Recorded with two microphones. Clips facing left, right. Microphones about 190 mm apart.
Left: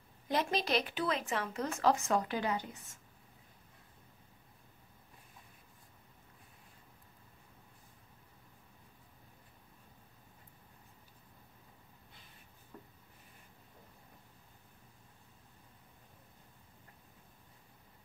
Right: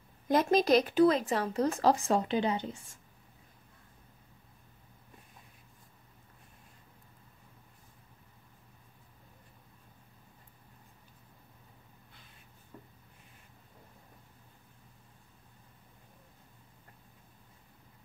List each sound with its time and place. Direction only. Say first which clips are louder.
0.3 s speech: right 8 dB; 45° right (ahead or behind); by 3.0 s 25° right (ahead or behind)